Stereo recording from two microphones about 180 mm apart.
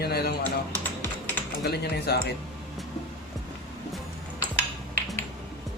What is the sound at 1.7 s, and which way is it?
Speech, 65° left (ahead or behind).